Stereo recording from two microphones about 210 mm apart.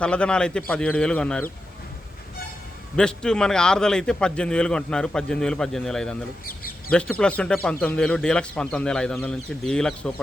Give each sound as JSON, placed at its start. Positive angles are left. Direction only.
{"t": 0.0, "sound": "a man's voice", "side_deg": 5}
{"t": 2.9, "sound": "a man's voice", "side_deg": 5}
{"t": 6.4, "sound": "a sound", "side_deg": 45}
{"t": 6.9, "sound": "a man's voice", "side_deg": 5}